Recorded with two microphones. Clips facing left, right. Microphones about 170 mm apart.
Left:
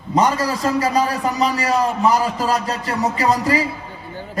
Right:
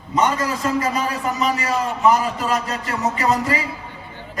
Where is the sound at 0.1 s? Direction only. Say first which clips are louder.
Left 2 dB; 35° left (ahead or behind).